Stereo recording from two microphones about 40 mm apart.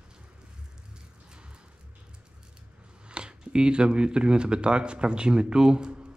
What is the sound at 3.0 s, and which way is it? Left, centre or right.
Speech, right.